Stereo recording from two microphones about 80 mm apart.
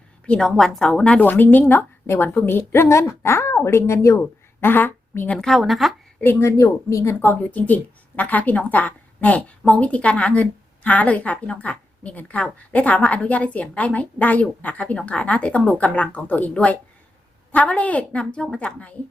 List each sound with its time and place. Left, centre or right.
0.3 s a woman's voice: centre
0.9 s a woman's voice: centre
1.2 s a woman's voice: left
4.2 s speech: left
5.4 s speech: centre
6.4 s speech: left
7.0 s a woman's voice: left